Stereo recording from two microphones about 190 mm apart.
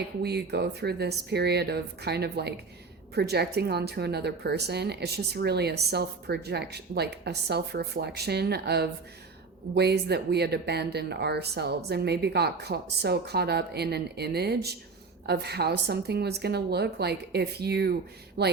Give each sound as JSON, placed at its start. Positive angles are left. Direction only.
{"t": 0.2, "sound": "speech", "side_deg": -60}